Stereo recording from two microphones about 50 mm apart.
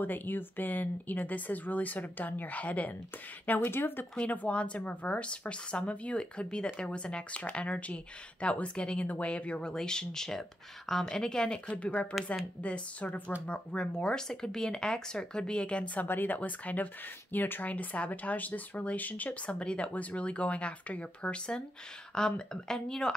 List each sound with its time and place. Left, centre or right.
0.0 s speech: left
3.4 s speech: left
4.1 s speech: left
16.1 s speech: left
19.6 s speech: left
19.9 s speech: left; by 23.1 s centre